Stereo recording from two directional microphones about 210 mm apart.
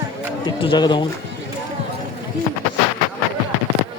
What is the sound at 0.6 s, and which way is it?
Speech, 20° left (ahead or behind).